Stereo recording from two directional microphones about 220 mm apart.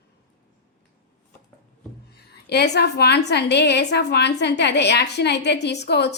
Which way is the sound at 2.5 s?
50° left (ahead or behind).